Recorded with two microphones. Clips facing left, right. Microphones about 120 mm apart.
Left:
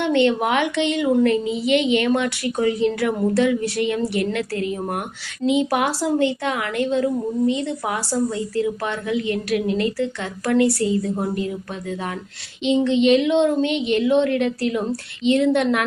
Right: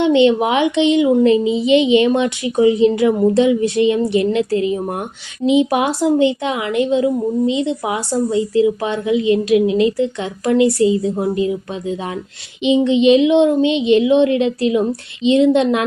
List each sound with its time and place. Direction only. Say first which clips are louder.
0.0 s a woman's voice: right 6 dB; 20° right (ahead or behind)